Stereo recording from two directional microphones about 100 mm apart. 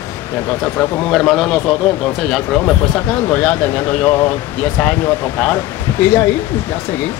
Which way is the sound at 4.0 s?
25° left (ahead or behind).